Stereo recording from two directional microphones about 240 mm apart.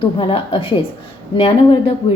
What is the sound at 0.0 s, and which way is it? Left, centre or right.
A woman's voice, left.